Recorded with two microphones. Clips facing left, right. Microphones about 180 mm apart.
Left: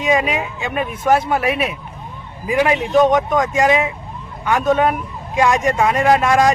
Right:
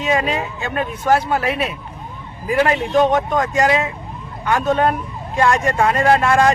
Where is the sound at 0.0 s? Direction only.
10° left (ahead or behind).